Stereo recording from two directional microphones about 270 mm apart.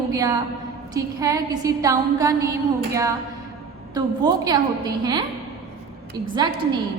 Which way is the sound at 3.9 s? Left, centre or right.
Centre.